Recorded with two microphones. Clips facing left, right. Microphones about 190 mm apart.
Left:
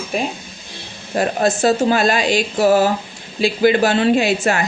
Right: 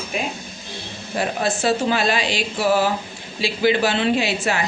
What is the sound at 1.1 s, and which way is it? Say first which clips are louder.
A woman's voice: left 5 dB; 45° left (ahead or behind).